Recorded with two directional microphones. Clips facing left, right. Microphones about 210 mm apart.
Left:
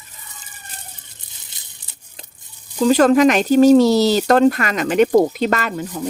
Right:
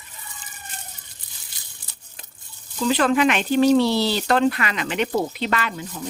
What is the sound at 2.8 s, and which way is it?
Speech, 40° left (ahead or behind).